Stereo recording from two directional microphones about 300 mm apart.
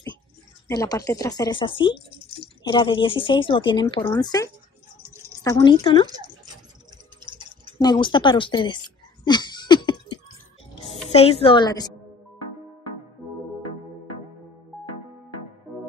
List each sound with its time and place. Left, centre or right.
0.7 s speech: centre
6.0 s speech: centre
7.8 s a sound: centre
11.1 s speech: centre
13.2 s music: centre